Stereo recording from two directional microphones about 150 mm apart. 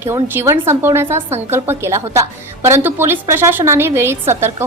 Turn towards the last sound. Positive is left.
turn(degrees=-15)  # may be behind; listen again after turning